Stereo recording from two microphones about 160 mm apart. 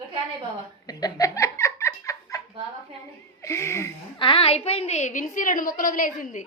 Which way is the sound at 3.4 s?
15° left (ahead or behind).